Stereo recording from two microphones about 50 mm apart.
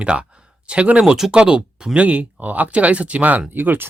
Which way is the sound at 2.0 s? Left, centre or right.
Right.